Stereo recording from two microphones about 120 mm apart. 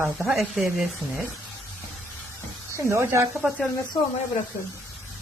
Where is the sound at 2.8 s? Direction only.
25° right (ahead or behind).